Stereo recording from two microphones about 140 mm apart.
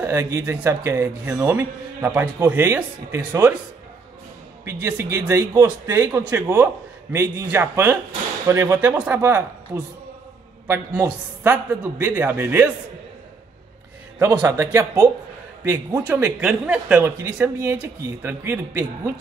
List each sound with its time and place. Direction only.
0.0 s speech: 20° right (ahead or behind)
4.6 s a man's voice: 20° right (ahead or behind)
14.1 s a man's voice: 20° right (ahead or behind)